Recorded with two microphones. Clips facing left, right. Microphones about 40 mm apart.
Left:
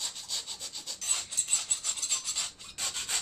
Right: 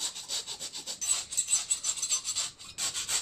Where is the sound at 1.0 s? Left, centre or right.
Centre.